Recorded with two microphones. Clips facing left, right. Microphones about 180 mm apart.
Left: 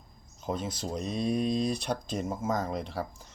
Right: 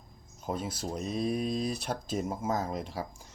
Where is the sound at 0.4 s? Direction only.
5° right (ahead or behind).